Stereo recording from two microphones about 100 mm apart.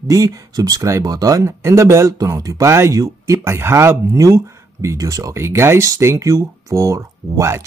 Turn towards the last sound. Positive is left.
turn(degrees=-30)  # may be behind; listen again after turning